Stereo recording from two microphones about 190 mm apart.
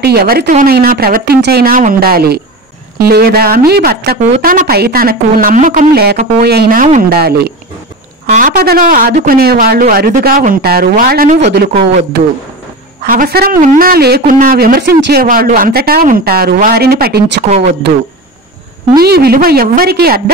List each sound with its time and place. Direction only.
0.0 s speech: 55° right (ahead or behind)
4.2 s speech: 45° right (ahead or behind)
8.3 s speech: 45° right (ahead or behind)
13.1 s speech: 50° right (ahead or behind)
17.5 s speech: 35° right (ahead or behind)
18.9 s speech: 55° right (ahead or behind)